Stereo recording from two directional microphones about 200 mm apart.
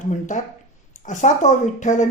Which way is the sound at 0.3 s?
35° left (ahead or behind).